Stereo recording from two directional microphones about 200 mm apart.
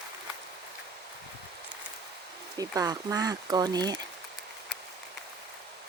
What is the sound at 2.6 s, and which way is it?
Speech, 20° right (ahead or behind).